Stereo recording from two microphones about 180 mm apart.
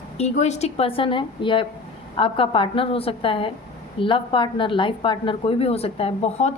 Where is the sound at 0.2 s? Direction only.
40° left (ahead or behind).